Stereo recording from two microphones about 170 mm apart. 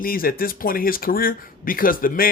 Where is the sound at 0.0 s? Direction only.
60° left (ahead or behind).